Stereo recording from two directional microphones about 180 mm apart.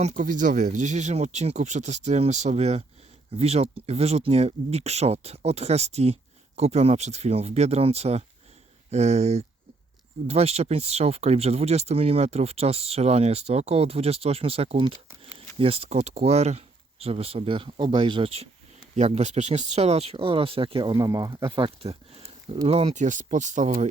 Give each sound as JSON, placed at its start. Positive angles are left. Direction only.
{"t": 0.0, "sound": "speech", "side_deg": -45}